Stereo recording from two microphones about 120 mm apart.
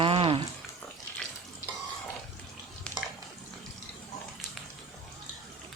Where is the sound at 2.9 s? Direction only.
10° left (ahead or behind).